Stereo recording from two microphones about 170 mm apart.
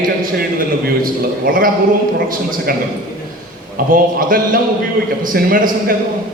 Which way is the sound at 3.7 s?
55° right (ahead or behind).